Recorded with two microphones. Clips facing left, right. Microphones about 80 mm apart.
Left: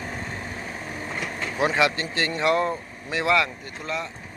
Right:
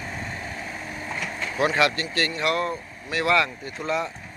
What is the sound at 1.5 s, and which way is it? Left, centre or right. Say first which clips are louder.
Speech: even; centre.